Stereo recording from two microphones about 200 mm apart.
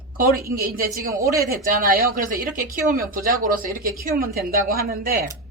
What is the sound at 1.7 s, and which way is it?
Speech, 45° right (ahead or behind).